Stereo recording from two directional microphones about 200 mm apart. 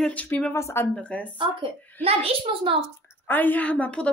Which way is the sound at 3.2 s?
10° left (ahead or behind).